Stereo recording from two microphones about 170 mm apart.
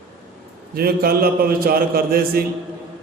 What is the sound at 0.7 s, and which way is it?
A man's voice, 60° right (ahead or behind).